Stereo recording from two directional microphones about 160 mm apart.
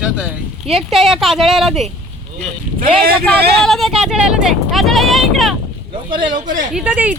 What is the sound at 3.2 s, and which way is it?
Speech, centre (ahead or behind).